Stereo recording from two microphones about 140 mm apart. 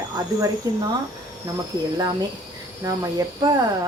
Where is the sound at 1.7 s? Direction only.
30° right (ahead or behind).